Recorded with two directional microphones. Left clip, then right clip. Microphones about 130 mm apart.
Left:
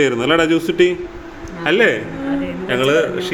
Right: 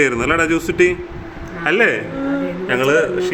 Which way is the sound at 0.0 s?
Centre (ahead or behind).